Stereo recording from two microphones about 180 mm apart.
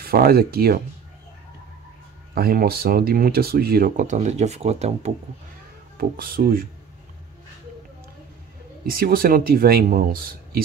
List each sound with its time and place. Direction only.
0.0 s speech: 55° right (ahead or behind)
2.3 s speech: 55° right (ahead or behind); by 5.1 s 35° right (ahead or behind)
5.9 s speech: 55° right (ahead or behind)
8.9 s speech: 55° right (ahead or behind)